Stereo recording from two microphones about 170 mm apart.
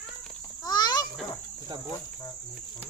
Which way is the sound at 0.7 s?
25° left (ahead or behind).